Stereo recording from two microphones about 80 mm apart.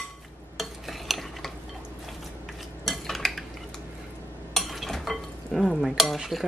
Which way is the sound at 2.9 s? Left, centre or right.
Centre.